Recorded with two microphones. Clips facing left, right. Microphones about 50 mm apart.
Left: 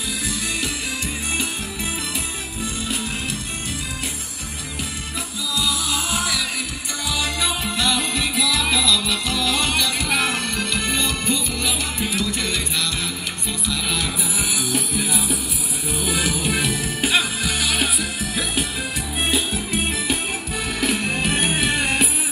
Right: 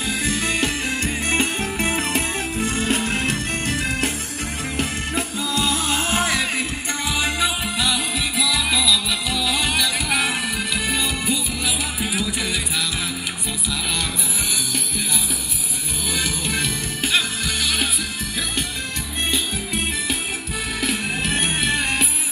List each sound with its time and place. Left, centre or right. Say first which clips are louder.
0.2 s music: right 5 dB; right
7.1 s music: right 1 dB; right; by 12.4 s centre
14.7 s music: left 3 dB; centre
19.3 s music: left 2 dB; centre